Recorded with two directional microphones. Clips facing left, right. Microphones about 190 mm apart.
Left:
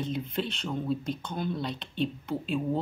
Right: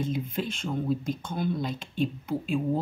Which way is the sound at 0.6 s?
5° right (ahead or behind).